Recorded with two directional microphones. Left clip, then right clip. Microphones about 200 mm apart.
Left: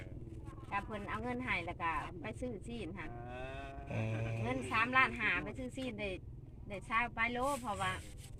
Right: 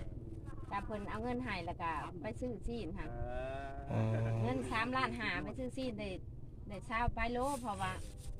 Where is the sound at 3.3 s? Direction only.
45° left (ahead or behind).